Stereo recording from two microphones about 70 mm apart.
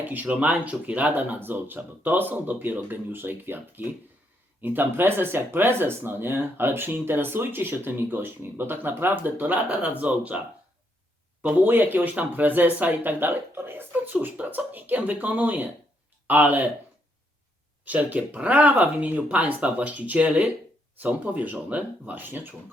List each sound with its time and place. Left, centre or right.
0.0 s speech: right
11.4 s speech: right
17.8 s speech: right